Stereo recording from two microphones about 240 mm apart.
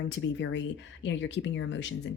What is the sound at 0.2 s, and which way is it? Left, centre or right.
Speech, left.